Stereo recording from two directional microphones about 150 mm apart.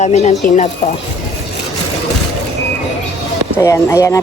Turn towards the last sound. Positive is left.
turn(degrees=20)  # may be behind; listen again after turning